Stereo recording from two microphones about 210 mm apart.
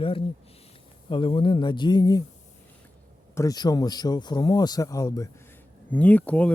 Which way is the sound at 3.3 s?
15° left (ahead or behind).